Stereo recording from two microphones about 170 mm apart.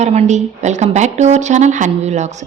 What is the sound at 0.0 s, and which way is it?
A woman's voice, 40° right (ahead or behind).